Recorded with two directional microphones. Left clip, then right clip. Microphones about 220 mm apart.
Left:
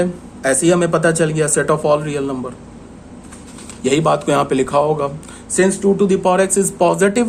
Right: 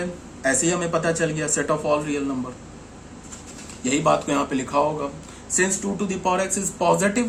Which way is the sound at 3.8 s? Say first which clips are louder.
Left 5 dB; 50° left (ahead or behind).